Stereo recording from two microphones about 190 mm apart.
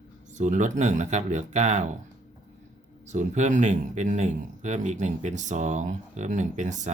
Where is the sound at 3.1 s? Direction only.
40° right (ahead or behind).